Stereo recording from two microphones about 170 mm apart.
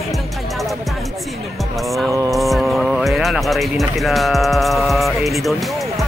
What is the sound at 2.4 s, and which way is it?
Speech, centre (ahead or behind).